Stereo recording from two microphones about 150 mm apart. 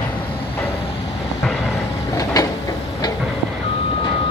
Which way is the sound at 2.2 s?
25° left (ahead or behind).